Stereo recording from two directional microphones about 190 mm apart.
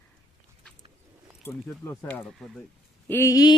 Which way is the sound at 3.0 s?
15° left (ahead or behind).